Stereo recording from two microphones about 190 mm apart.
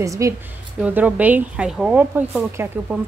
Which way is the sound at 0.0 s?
15° right (ahead or behind).